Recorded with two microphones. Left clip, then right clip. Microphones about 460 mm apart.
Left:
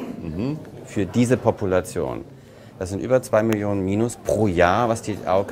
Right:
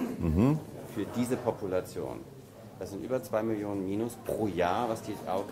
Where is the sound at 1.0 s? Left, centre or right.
Left.